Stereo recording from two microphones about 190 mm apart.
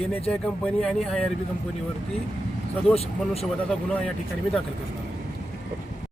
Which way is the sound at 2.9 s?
30° left (ahead or behind).